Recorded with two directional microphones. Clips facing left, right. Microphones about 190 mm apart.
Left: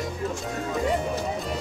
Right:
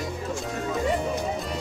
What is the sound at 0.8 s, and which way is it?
Music, centre (ahead or behind).